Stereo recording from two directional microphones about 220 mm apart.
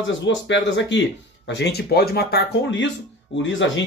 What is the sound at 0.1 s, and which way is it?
Speech, 55° left (ahead or behind).